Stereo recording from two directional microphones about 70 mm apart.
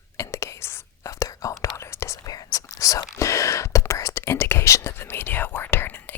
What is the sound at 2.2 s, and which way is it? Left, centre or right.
Whispering, left.